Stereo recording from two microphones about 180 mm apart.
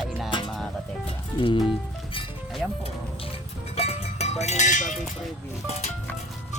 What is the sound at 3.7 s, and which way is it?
Music, 35° left (ahead or behind).